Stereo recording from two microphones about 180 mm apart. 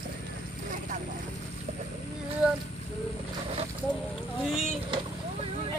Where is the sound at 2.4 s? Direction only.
5° right (ahead or behind).